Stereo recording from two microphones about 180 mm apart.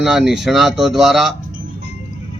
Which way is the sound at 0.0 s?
Centre (ahead or behind).